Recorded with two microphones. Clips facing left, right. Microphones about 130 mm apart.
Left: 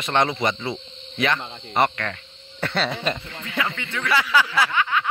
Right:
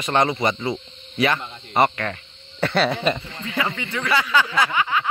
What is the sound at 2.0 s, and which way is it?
Cricket, 15° right (ahead or behind).